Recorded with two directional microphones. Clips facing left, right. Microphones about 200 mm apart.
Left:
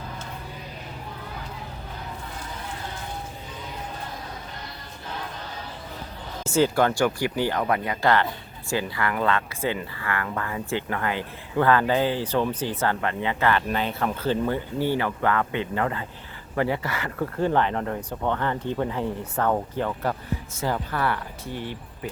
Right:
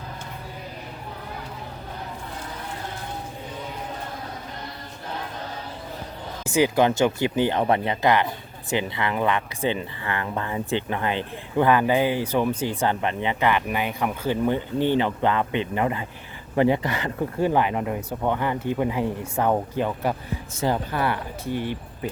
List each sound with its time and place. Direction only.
6.4 s speech: 15° right (ahead or behind)